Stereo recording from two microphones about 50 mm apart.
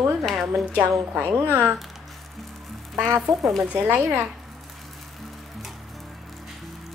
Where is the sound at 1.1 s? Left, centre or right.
Right.